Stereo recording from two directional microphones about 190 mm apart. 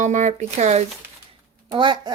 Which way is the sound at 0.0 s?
40° right (ahead or behind).